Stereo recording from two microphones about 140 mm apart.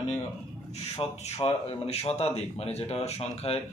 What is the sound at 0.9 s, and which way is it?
Speech, 45° left (ahead or behind).